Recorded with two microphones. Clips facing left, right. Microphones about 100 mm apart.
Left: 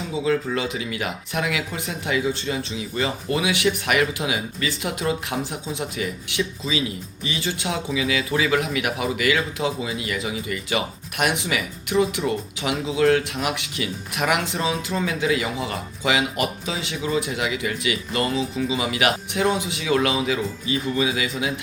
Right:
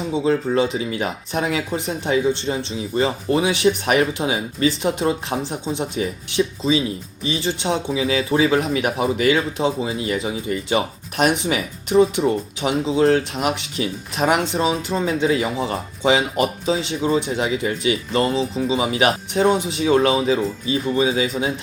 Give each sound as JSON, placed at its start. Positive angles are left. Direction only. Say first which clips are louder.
{"t": 0.1, "sound": "speech", "louder": "right 3 dB", "side_deg": -30}